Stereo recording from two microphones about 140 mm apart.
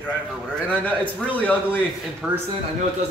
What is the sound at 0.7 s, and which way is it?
A man's voice, 10° left (ahead or behind).